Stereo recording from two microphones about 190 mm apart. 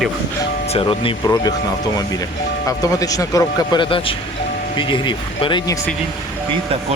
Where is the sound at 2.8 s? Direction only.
20° left (ahead or behind).